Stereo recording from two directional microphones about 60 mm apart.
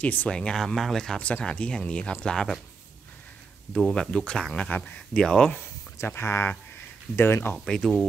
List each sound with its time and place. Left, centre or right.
0.0 s speech: left
0.3 s speech: centre
1.2 s speech: left
3.7 s speech: centre
4.6 s speech: left
5.2 s speech: centre
6.0 s speech: left
7.5 s speech: centre